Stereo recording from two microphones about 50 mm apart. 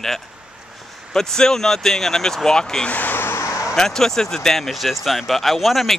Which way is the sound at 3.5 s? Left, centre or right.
Left.